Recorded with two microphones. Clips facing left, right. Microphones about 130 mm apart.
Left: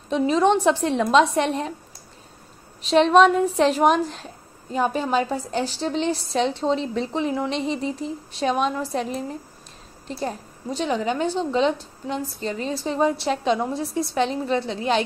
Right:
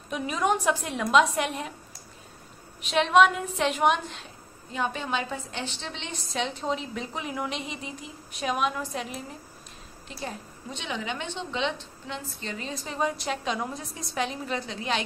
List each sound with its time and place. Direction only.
0.1 s a woman's voice: 30° left (ahead or behind)
2.8 s a woman's voice: 35° left (ahead or behind)